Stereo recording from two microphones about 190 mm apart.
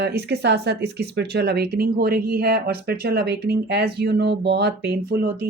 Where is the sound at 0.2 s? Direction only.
60° right (ahead or behind).